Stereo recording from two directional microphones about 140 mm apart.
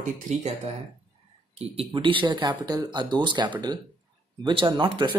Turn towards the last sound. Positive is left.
turn(degrees=-35)  # may be behind; listen again after turning